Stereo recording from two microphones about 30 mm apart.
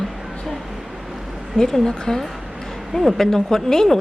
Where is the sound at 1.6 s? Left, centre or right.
Centre.